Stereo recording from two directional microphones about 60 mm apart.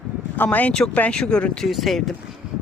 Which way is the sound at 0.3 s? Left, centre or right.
Left.